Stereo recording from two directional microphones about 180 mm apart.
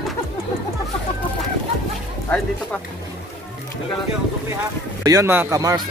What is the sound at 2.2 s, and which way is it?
Speech, 5° left (ahead or behind).